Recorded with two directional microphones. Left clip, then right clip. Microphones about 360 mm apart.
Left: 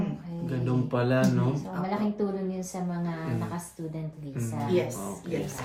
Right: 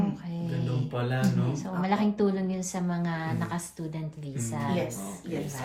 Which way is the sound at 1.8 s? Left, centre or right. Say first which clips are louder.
Right 4 dB; right.